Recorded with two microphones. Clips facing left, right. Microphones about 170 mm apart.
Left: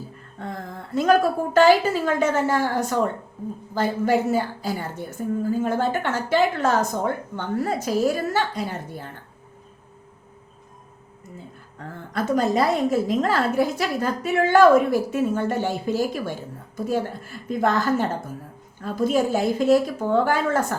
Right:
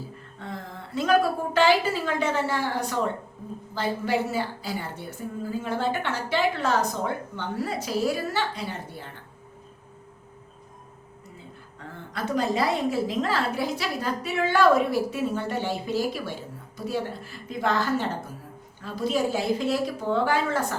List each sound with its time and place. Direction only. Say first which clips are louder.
0.4 s a sound: left 4 dB; 45° left (ahead or behind)
1.5 s a woman's voice: left 5 dB; 45° left (ahead or behind)
12.1 s a woman's voice: left 5 dB; 45° left (ahead or behind)